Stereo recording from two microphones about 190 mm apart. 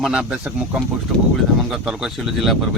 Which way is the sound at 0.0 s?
5° right (ahead or behind).